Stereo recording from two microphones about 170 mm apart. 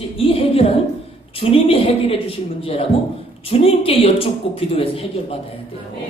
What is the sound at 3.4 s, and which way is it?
Speech, 35° left (ahead or behind).